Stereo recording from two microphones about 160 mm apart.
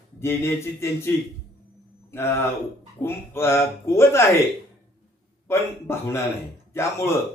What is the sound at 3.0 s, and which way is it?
Speech, 15° left (ahead or behind).